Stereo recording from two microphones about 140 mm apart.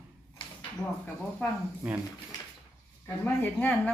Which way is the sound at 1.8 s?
15° right (ahead or behind).